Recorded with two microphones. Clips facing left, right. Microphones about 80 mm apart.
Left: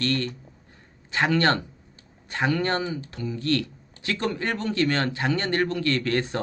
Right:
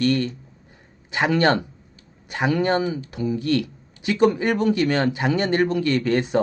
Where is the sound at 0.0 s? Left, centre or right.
Centre.